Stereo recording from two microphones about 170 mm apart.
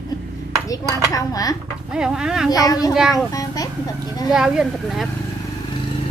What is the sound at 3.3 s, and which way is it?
Speech, 20° left (ahead or behind).